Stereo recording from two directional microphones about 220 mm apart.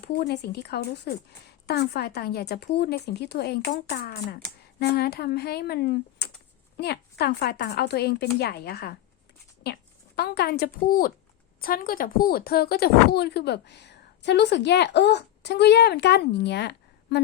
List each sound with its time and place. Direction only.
0.0 s speech: 50° left (ahead or behind)
10.2 s speech: 45° left (ahead or behind)